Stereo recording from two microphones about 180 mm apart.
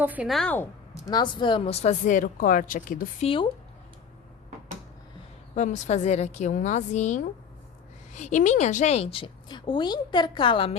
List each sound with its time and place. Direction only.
0.0 s a woman's voice: 10° right (ahead or behind); by 0.7 s 10° left (ahead or behind)
1.0 s a woman's voice: 25° left (ahead or behind); by 3.2 s 50° left (ahead or behind)
5.5 s a woman's voice: 40° left (ahead or behind)